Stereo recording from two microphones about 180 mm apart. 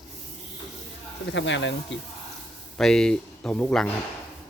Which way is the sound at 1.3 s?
90° left.